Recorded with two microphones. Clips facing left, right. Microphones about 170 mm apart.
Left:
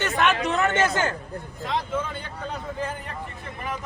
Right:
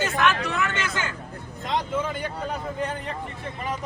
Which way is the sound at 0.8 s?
45° left (ahead or behind).